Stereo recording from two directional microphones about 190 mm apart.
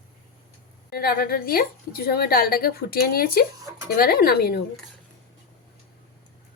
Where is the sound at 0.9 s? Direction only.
50° left (ahead or behind).